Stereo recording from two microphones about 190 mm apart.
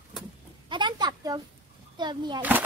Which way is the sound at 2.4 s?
10° right (ahead or behind).